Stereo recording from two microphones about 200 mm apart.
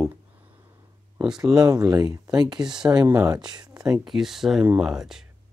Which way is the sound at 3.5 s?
20° right (ahead or behind).